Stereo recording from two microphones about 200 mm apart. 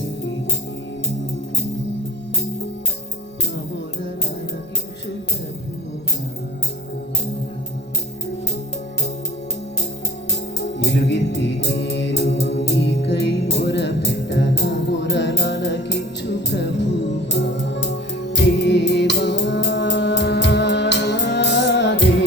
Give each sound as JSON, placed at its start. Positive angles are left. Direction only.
{"t": 10.6, "sound": "music", "side_deg": 60}